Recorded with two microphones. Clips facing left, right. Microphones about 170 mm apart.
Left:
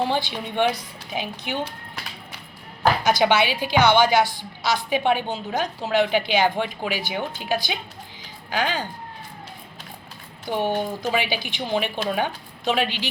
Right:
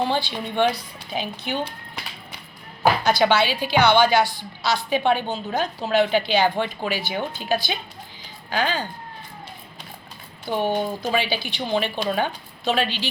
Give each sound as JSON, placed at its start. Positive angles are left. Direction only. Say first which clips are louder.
{"t": 0.0, "sound": "a woman's voice", "louder": "even", "side_deg": 15}
{"t": 3.0, "sound": "a woman's voice", "louder": "left 1 dB", "side_deg": 15}
{"t": 10.6, "sound": "speech", "louder": "right 1 dB", "side_deg": -10}
{"t": 11.1, "sound": "a woman's voice", "louder": "right 1 dB", "side_deg": 15}